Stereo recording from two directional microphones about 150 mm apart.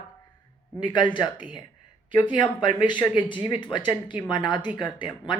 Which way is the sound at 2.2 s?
30° left (ahead or behind).